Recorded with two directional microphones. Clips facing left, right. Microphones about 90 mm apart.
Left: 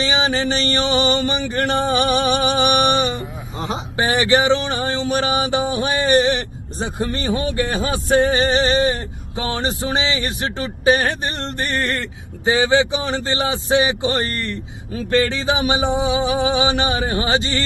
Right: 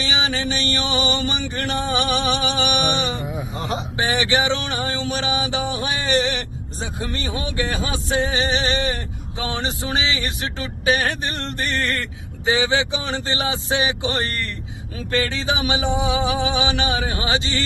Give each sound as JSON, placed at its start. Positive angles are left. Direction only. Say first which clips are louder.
{"t": 0.0, "sound": "music", "louder": "left 4 dB", "side_deg": 40}
{"t": 7.3, "sound": "speech", "louder": "left 3 dB", "side_deg": 40}